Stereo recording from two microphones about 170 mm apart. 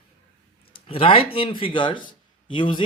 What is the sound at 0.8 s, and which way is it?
A man's voice, 35° left (ahead or behind).